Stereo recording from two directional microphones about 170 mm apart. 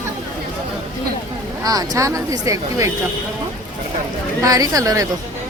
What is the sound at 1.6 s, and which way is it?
Speech, 20° right (ahead or behind).